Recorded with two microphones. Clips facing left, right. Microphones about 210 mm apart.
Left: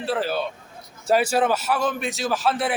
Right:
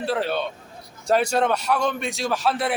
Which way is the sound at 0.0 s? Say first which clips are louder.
Even; centre (ahead or behind).